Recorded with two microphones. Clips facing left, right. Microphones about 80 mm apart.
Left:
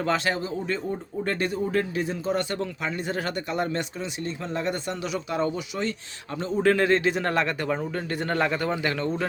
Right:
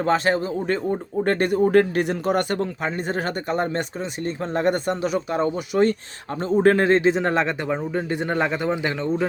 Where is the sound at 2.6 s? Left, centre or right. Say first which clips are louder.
Right 4 dB; right; by 9.1 s centre.